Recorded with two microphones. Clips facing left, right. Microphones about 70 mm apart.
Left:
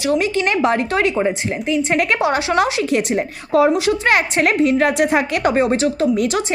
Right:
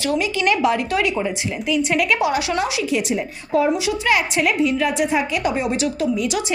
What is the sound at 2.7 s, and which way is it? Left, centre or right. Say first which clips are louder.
A woman's voice: left 3 dB; left.